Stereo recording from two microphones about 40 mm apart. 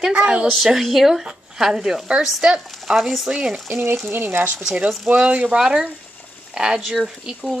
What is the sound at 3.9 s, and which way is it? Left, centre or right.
Speech, right.